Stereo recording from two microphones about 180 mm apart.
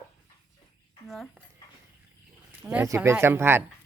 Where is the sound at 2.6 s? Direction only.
5° right (ahead or behind).